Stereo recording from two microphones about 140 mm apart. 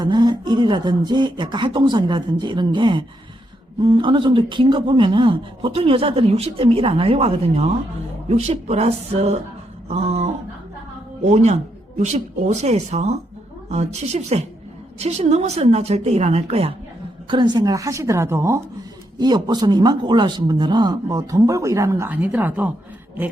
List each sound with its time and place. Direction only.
0.0 s speech: 30° right (ahead or behind); by 16.7 s 45° right (ahead or behind)
17.2 s a man's voice: 35° right (ahead or behind)
19.2 s a man's voice: 30° right (ahead or behind); by 22.7 s 15° right (ahead or behind)